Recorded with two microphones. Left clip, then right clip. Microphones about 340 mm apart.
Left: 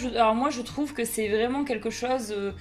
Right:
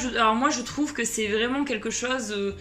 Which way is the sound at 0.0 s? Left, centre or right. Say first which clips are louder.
Right 1 dB; centre.